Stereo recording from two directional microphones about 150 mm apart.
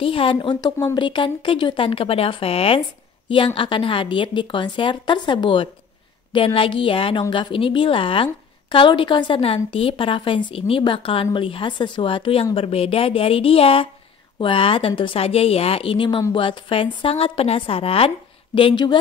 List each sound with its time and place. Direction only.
0.0 s a woman's voice: 35° left (ahead or behind)